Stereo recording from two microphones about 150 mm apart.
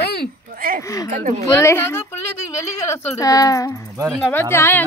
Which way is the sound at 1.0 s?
60° right (ahead or behind).